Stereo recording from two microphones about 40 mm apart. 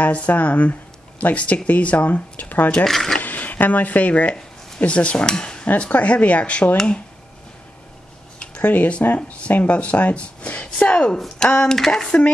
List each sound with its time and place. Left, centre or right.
0.0 s speech: left
2.9 s speech: centre
3.2 s speech: left
5.2 s speech: centre
5.8 s speech: left
8.4 s speech: left
11.7 s a sound: centre